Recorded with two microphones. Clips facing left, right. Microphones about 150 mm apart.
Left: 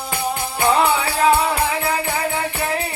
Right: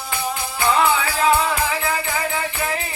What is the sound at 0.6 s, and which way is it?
Music, 30° left (ahead or behind).